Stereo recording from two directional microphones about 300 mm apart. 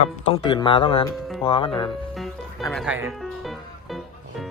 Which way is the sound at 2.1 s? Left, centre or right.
Centre.